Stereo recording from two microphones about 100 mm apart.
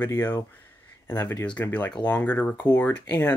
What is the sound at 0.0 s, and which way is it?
Speech, 20° left (ahead or behind).